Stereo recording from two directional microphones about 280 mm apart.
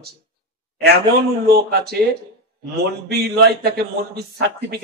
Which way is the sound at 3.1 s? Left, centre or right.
Right.